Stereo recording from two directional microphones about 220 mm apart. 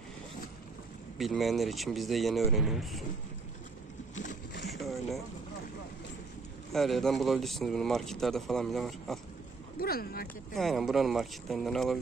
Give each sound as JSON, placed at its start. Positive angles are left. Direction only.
{"t": 1.1, "sound": "speech", "side_deg": 0}
{"t": 4.1, "sound": "boat", "side_deg": 35}
{"t": 4.7, "sound": "a sound", "side_deg": 0}
{"t": 6.7, "sound": "speech", "side_deg": 0}
{"t": 9.8, "sound": "speech", "side_deg": 45}
{"t": 10.2, "sound": "speech", "side_deg": 0}